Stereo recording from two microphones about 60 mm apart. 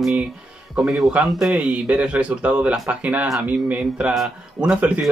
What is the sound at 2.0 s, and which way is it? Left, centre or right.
Speech, centre.